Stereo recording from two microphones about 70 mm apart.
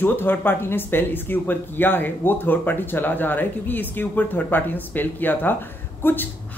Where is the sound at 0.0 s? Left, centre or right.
Left.